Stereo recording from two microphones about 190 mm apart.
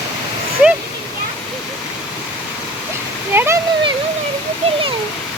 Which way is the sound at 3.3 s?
15° right (ahead or behind).